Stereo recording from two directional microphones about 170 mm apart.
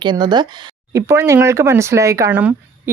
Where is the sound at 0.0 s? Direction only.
25° right (ahead or behind).